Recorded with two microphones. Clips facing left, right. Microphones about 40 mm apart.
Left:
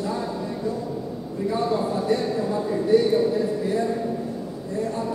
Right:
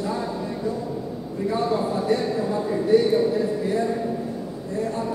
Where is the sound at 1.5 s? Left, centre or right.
Centre.